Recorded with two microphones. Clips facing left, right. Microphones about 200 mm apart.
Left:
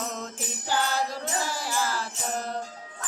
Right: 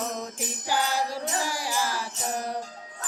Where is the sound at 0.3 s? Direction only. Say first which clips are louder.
Left 1 dB; 10° right (ahead or behind).